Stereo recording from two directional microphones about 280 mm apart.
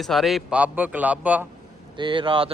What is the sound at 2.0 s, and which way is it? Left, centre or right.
Speech, centre.